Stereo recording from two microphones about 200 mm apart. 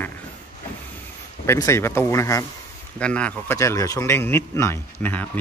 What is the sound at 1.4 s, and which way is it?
A man's voice, 15° left (ahead or behind).